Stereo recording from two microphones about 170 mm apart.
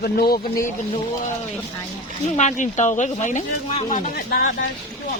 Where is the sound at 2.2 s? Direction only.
45° left (ahead or behind).